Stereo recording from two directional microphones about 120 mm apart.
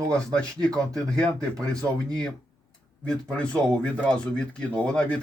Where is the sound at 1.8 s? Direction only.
5° left (ahead or behind).